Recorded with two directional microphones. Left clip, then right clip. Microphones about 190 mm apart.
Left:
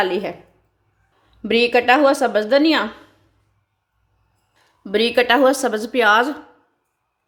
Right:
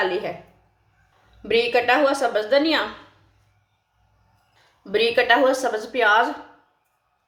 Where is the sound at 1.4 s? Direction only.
55° left (ahead or behind).